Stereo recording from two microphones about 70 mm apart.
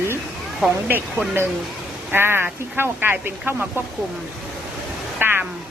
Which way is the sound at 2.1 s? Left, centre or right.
Right.